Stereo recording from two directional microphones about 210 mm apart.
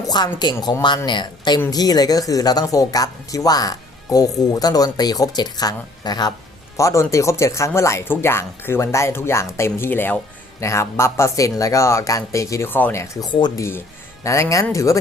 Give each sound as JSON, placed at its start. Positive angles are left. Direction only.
{"t": 0.1, "sound": "a woman's voice", "side_deg": 20}